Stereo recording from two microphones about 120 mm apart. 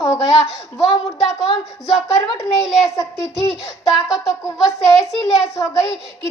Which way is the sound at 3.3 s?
5° right (ahead or behind).